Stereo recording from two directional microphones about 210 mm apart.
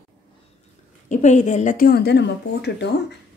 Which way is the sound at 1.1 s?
35° left (ahead or behind).